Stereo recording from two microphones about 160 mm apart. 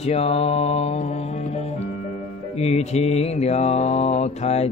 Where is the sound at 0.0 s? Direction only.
40° left (ahead or behind).